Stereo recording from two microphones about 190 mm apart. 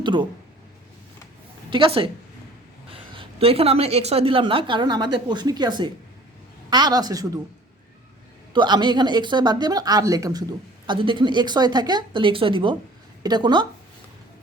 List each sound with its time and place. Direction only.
0.0 s a woman's voice: 25° right (ahead or behind)
1.7 s a woman's voice: 30° right (ahead or behind)
8.5 s a woman's voice: 25° right (ahead or behind)